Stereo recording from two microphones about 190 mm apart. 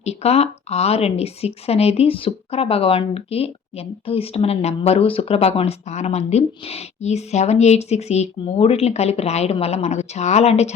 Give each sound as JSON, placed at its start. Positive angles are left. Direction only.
{"t": 0.0, "sound": "speech", "side_deg": 35}